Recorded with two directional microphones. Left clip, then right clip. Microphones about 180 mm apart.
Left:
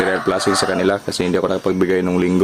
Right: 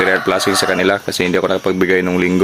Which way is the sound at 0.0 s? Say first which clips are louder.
Right 3 dB; centre (ahead or behind).